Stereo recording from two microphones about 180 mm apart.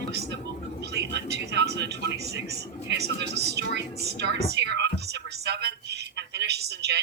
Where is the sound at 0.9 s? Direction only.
70° right (ahead or behind).